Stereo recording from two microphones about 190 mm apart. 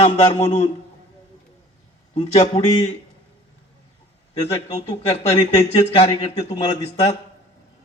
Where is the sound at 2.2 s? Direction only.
30° left (ahead or behind).